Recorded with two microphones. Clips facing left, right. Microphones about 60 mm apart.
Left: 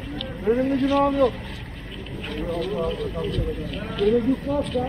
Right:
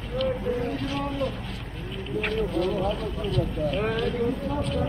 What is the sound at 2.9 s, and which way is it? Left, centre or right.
Speech, right.